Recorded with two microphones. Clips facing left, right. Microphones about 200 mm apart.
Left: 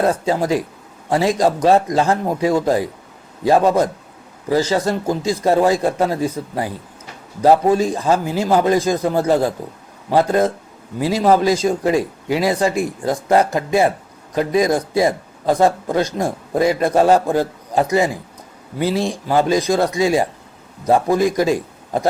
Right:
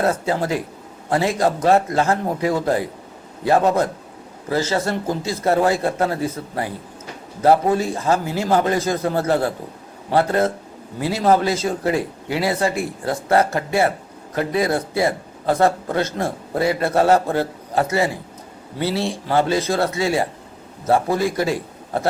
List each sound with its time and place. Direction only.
0.0 s speech: 15° left (ahead or behind)